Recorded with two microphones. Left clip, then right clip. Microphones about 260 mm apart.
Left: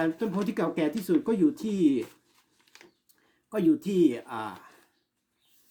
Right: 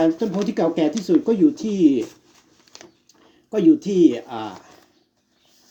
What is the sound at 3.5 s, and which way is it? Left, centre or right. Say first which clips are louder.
Speech: right 9 dB; centre.